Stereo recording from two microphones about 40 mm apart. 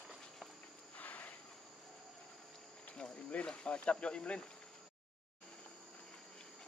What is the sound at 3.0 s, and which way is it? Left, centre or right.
Speech, left.